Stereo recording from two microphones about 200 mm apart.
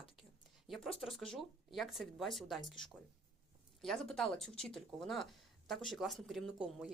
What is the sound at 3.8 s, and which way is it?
Speech, centre (ahead or behind).